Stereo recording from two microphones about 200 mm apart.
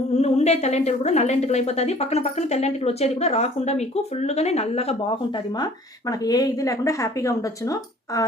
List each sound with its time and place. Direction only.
0.2 s a woman's voice: 35° left (ahead or behind); by 8.2 s 15° left (ahead or behind)